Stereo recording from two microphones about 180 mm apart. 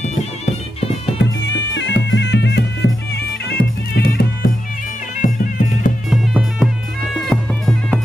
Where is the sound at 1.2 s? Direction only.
80° left; by 4.5 s 60° left (ahead or behind).